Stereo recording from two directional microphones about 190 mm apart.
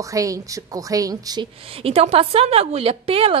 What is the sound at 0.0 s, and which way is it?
Speech, 15° right (ahead or behind).